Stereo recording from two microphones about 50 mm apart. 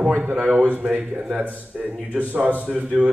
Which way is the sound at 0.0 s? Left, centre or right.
Centre.